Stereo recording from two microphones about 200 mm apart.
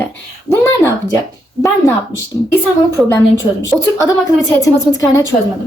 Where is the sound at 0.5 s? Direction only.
15° left (ahead or behind).